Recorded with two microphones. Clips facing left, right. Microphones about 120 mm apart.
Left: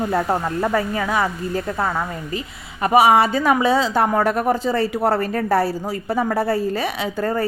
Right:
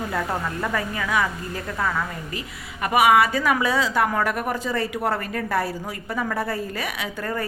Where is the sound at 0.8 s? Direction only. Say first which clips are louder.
Left 4 dB; 30° left (ahead or behind).